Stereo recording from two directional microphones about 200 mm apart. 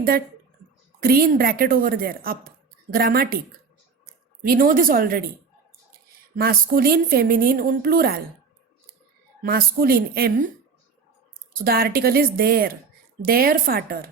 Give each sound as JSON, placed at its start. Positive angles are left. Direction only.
{"t": 0.9, "sound": "speech", "side_deg": -45}
{"t": 9.4, "sound": "speech", "side_deg": -50}
{"t": 11.5, "sound": "speech", "side_deg": -50}